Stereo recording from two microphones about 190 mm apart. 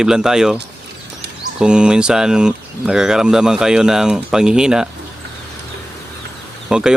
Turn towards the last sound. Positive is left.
turn(degrees=-5)  # may be behind; listen again after turning